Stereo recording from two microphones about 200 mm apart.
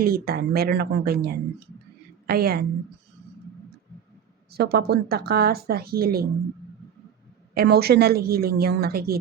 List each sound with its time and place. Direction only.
0.0 s a woman's voice: 50° right (ahead or behind)
4.5 s a woman's voice: 50° right (ahead or behind)
7.5 s a woman's voice: 50° right (ahead or behind)